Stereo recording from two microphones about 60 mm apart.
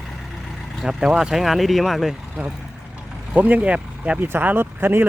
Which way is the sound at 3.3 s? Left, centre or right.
Right.